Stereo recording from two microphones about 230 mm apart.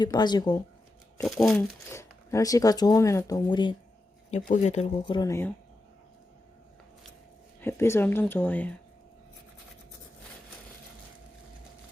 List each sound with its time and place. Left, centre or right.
0.0 s speech: centre
1.3 s speech: centre
1.9 s speech: centre
4.3 s speech: left; by 5.5 s centre
7.6 s speech: centre